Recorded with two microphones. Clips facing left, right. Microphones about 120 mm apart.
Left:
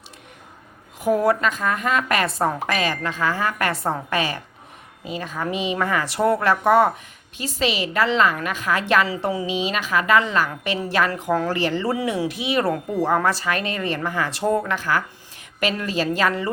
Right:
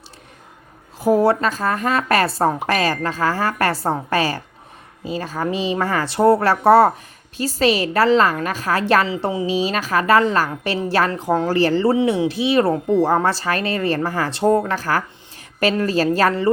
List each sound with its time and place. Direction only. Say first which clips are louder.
0.9 s a woman's voice: right 3 dB; 30° right (ahead or behind)
9.0 s a woman's voice: right 3 dB; 25° right (ahead or behind)